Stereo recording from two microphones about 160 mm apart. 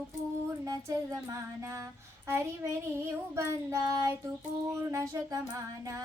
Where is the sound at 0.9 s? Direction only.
20° right (ahead or behind).